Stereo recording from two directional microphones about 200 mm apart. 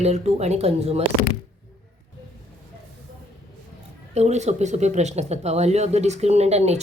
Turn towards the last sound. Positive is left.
turn(degrees=-35)  # may be behind; listen again after turning